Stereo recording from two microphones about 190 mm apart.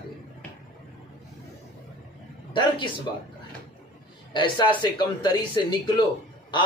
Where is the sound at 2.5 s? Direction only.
25° left (ahead or behind).